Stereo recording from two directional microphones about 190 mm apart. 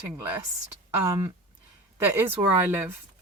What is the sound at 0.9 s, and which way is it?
Speech, 15° right (ahead or behind).